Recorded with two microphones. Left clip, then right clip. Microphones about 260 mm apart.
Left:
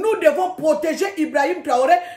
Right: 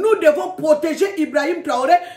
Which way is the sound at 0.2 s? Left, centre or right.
Centre.